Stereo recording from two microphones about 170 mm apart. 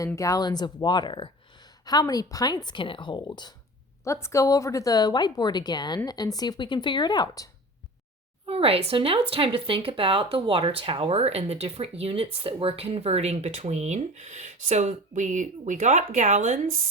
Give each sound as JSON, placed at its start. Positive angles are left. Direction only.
{"t": 0.0, "sound": "speech", "side_deg": 20}
{"t": 8.4, "sound": "speech", "side_deg": -35}